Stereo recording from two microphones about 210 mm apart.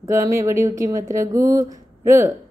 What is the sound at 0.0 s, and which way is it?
Speech, 15° right (ahead or behind).